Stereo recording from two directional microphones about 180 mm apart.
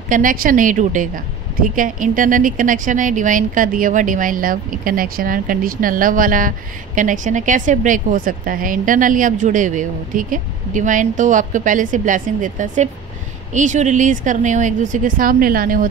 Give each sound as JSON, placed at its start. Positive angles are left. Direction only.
{"t": 0.1, "sound": "a woman's voice", "side_deg": -50}